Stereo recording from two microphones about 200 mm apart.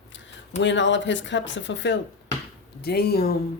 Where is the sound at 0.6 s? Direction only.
65° left (ahead or behind).